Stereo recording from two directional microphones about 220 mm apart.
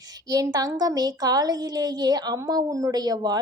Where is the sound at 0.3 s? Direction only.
15° right (ahead or behind).